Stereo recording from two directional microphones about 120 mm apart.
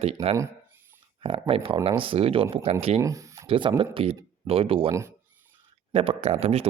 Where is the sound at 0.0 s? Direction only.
60° right (ahead or behind).